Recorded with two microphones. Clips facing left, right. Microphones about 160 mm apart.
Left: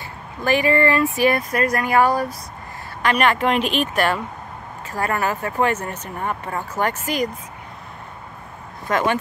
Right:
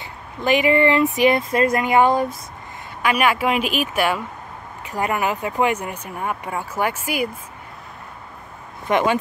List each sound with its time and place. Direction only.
0.4 s speech: 20° right (ahead or behind)
3.0 s speech: 5° right (ahead or behind)
8.8 s speech: 20° right (ahead or behind)